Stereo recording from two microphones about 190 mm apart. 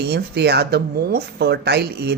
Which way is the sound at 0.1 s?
60° right (ahead or behind).